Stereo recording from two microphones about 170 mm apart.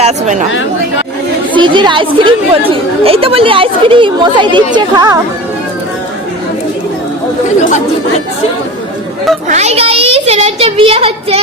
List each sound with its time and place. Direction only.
0.0 s speech: 45° right (ahead or behind)
1.5 s speech: 30° right (ahead or behind)
9.5 s a child's voice: 40° right (ahead or behind)